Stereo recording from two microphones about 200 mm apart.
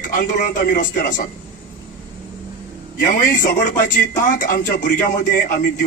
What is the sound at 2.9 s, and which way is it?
A man's voice, 40° left (ahead or behind).